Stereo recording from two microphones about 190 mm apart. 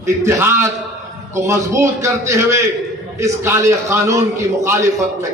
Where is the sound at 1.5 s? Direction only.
15° right (ahead or behind).